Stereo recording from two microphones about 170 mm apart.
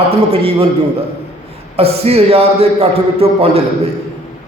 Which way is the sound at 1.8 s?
35° right (ahead or behind).